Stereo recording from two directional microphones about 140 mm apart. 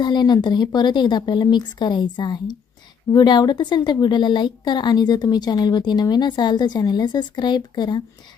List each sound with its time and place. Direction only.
0.0 s a woman's voice: 30° left (ahead or behind)